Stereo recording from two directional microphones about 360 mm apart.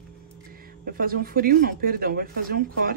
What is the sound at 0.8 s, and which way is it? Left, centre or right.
Speech, right.